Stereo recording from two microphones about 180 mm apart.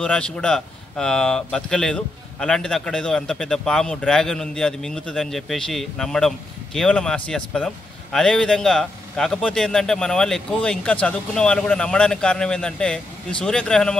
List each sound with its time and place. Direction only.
0.0 s speech: 5° left (ahead or behind)